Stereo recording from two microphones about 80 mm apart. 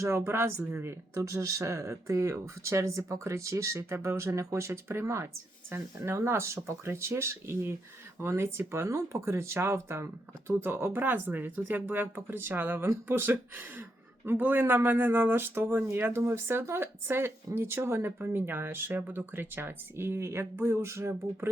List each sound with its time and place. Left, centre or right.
0.0 s speech: right
1.1 s speech: right